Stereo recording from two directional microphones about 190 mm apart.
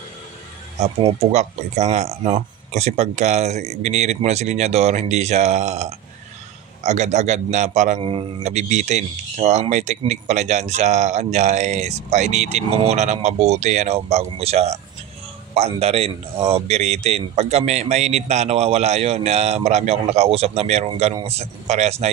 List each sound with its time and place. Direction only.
1.2 s a man's voice: 35° right (ahead or behind)